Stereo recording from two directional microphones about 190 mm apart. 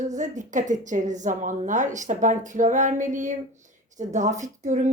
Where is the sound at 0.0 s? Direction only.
40° right (ahead or behind).